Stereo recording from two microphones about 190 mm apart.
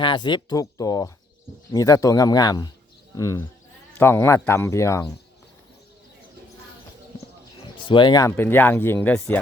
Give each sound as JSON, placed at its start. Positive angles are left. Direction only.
{"t": 0.0, "sound": "speech", "side_deg": 25}
{"t": 7.8, "sound": "speech", "side_deg": 25}